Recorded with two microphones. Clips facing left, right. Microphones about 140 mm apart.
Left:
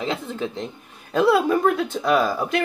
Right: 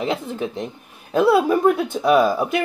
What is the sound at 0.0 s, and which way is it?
Speech, 15° right (ahead or behind).